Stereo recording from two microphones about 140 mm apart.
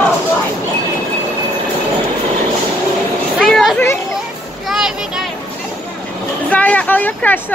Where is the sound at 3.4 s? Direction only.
Centre (ahead or behind).